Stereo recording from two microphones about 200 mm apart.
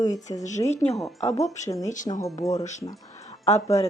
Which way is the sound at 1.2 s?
30° left (ahead or behind).